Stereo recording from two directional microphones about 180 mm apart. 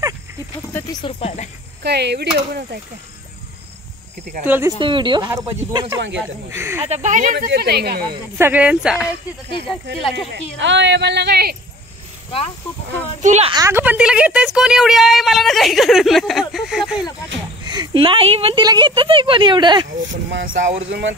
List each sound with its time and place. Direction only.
1.0 s speech: 40° left (ahead or behind)
1.8 s speech: 65° right (ahead or behind)
4.5 s speech: 15° right (ahead or behind)
4.7 s speech: 25° right (ahead or behind)
6.8 s speech: 40° right (ahead or behind); by 8.2 s 60° right (ahead or behind)
8.4 s speech: 10° right (ahead or behind)
10.6 s speech: 85° right; by 11.5 s 65° right (ahead or behind)
13.2 s speech: 40° right (ahead or behind)
13.5 s a woman's voice: 15° right (ahead or behind); by 17.0 s centre (ahead or behind)
17.6 s speech: 25° right (ahead or behind)
20.0 s speech: 85° right
20.6 s speech: 40° right (ahead or behind)